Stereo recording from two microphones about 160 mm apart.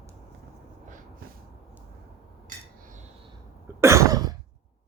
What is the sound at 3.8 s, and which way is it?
Cough, 20° right (ahead or behind).